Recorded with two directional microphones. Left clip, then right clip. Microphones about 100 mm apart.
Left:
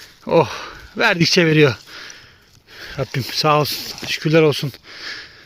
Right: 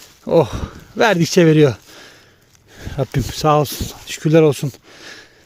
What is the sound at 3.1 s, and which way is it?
Speech, 90° right.